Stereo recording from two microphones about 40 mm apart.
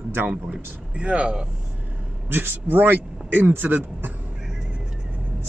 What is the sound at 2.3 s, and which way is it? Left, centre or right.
Speech, right.